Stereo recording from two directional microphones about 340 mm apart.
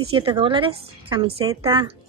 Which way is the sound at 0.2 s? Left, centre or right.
Centre.